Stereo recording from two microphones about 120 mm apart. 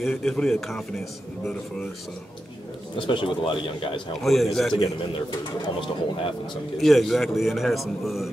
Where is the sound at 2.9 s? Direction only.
45° left (ahead or behind).